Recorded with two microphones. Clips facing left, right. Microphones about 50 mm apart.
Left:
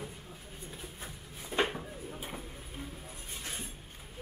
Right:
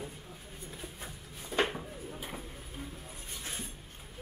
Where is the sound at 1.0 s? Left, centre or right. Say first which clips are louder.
Even; centre.